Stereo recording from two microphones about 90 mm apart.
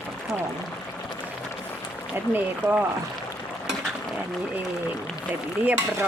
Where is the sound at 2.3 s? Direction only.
20° right (ahead or behind).